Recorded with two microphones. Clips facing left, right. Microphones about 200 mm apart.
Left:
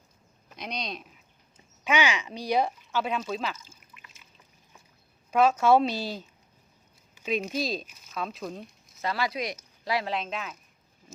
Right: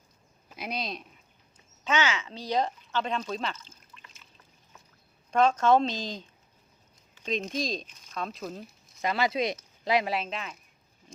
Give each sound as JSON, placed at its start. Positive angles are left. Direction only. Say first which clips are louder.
{"t": 0.5, "sound": "speech", "louder": "right 1 dB", "side_deg": -5}
{"t": 1.8, "sound": "speech", "louder": "left 2 dB", "side_deg": 15}
{"t": 5.3, "sound": "speech", "louder": "left 1 dB", "side_deg": 5}
{"t": 9.0, "sound": "speech", "louder": "right 3 dB", "side_deg": -20}
{"t": 10.1, "sound": "speech", "louder": "even", "side_deg": -5}